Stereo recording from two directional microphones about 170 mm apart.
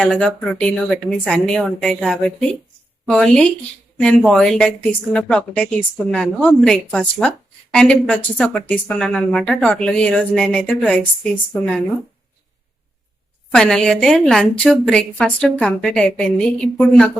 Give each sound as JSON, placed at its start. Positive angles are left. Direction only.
{"t": 0.0, "sound": "speech", "side_deg": 5}
{"t": 13.5, "sound": "speech", "side_deg": 5}